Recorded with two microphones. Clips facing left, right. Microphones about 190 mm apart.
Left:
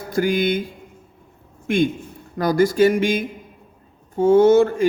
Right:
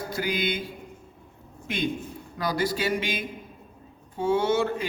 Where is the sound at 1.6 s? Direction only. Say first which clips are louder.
Left 10 dB; 50° left (ahead or behind).